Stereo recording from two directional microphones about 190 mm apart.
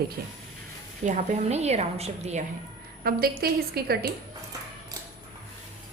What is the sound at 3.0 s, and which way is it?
A woman's voice, 55° right (ahead or behind).